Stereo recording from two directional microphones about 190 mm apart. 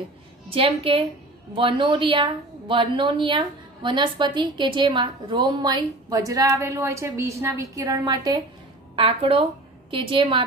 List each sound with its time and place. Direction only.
0.5 s a woman's voice: 30° right (ahead or behind)